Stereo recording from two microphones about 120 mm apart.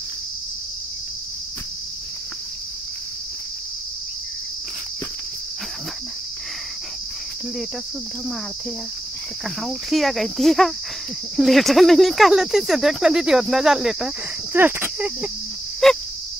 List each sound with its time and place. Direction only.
9.6 s speech: centre (ahead or behind)
14.5 s cricket: 15° right (ahead or behind)
15.8 s a sound: centre (ahead or behind)